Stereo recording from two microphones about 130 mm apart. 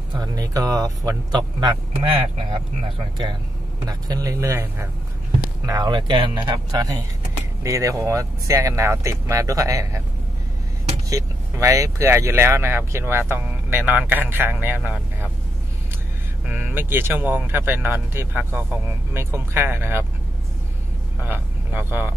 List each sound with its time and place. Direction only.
0.1 s speech: 30° right (ahead or behind)
3.8 s speech: 30° right (ahead or behind)
5.7 s speech: 35° right (ahead or behind)
11.1 s speech: 25° right (ahead or behind)
16.4 s speech: 15° right (ahead or behind)
21.2 s speech: 15° right (ahead or behind)